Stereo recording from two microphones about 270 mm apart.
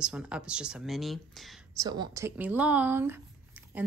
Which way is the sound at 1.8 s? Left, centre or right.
Centre.